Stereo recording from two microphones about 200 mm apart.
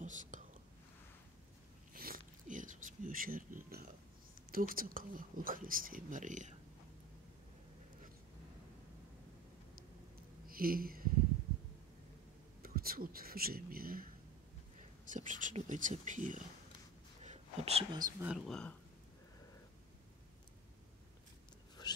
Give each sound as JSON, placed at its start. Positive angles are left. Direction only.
{"t": 0.0, "sound": "whispering", "side_deg": -40}
{"t": 2.0, "sound": "a sound", "side_deg": -45}
{"t": 4.5, "sound": "speech", "side_deg": -45}
{"t": 10.5, "sound": "speech", "side_deg": -45}
{"t": 12.6, "sound": "speech", "side_deg": -45}
{"t": 15.0, "sound": "speech", "side_deg": -40}
{"t": 17.2, "sound": "a sound", "side_deg": -35}
{"t": 18.2, "sound": "speech", "side_deg": 0}
{"t": 21.8, "sound": "a sound", "side_deg": 20}